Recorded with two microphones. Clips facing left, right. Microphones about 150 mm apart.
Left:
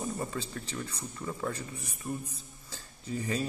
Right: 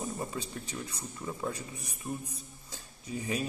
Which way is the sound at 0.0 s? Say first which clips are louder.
Left 1 dB; 10° right (ahead or behind).